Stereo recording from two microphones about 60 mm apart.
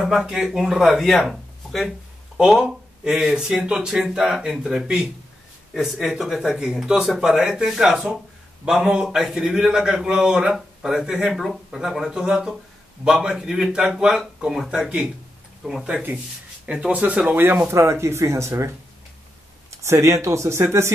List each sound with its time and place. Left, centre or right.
0.0 s a man's voice: centre; by 17.2 s right
17.4 s speech: right
17.7 s speech: right
19.8 s speech: right